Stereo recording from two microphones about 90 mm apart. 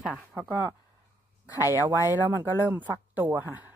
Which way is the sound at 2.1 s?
20° right (ahead or behind).